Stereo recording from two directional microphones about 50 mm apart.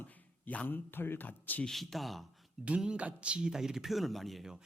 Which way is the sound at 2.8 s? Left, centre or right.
Right.